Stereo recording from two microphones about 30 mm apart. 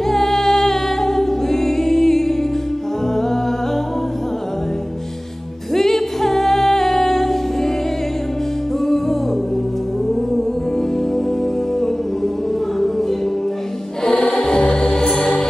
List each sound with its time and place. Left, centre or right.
0.0 s a capella: centre
5.7 s music: centre
8.8 s music: centre
14.1 s music: left